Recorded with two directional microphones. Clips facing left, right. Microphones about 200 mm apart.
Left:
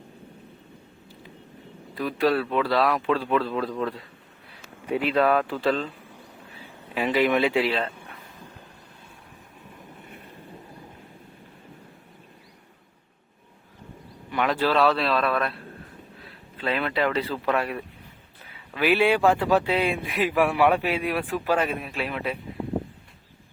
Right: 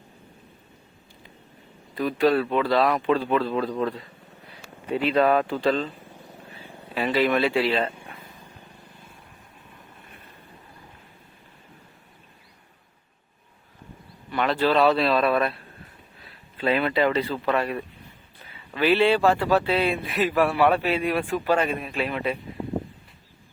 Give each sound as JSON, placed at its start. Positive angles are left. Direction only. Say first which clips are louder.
{"t": 2.0, "sound": "speech", "louder": "right 2 dB", "side_deg": 0}
{"t": 4.9, "sound": "speech", "louder": "right 1 dB", "side_deg": 10}
{"t": 5.2, "sound": "speech", "louder": "right 2 dB", "side_deg": 0}
{"t": 6.9, "sound": "speech", "louder": "even", "side_deg": 15}
{"t": 14.3, "sound": "speech", "louder": "right 1 dB", "side_deg": 10}
{"t": 16.6, "sound": "speech", "louder": "right 3 dB", "side_deg": -5}